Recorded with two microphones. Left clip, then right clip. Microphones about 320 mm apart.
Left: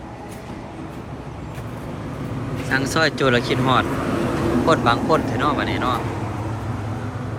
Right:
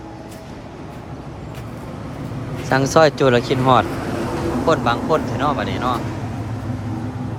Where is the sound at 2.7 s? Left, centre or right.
Centre.